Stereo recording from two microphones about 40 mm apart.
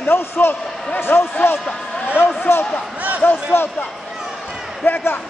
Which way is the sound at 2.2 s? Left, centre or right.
Left.